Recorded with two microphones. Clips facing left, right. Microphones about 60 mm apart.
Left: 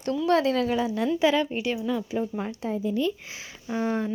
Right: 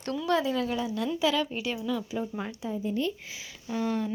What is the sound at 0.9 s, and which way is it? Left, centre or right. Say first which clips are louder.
Speech: left 4 dB; left.